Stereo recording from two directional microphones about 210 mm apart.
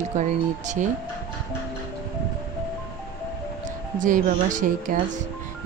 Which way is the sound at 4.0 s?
40° right (ahead or behind).